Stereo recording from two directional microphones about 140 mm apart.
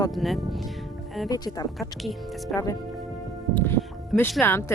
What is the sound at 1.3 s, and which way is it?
Speech, 25° left (ahead or behind).